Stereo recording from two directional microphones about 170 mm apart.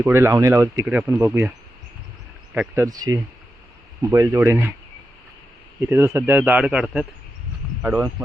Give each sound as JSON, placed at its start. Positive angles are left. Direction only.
{"t": 0.0, "sound": "speech", "side_deg": -15}
{"t": 2.6, "sound": "speech", "side_deg": -15}
{"t": 5.8, "sound": "speech", "side_deg": -15}